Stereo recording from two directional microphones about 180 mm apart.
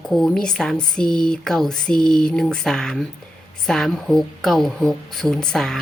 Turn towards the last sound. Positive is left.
turn(degrees=0)  # may be behind; listen again after turning